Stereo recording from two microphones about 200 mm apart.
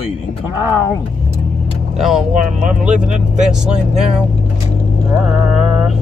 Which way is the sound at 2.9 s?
40° right (ahead or behind).